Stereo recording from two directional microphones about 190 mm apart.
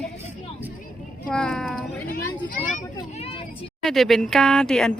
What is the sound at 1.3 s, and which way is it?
Speech, 5° left (ahead or behind).